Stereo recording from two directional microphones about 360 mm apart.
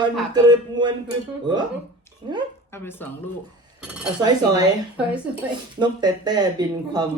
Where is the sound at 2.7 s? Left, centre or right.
Centre.